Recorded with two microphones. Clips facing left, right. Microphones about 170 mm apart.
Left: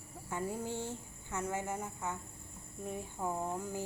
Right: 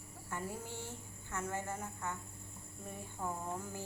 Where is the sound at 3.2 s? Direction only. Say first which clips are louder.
Left 3 dB; 10° left (ahead or behind).